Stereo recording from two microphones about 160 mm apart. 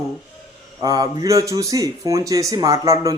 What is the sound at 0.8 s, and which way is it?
Speech, 20° right (ahead or behind).